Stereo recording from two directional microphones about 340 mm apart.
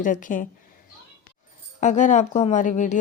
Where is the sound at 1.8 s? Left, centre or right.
Left.